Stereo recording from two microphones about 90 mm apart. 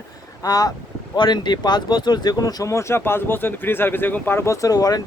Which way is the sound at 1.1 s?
60° left (ahead or behind).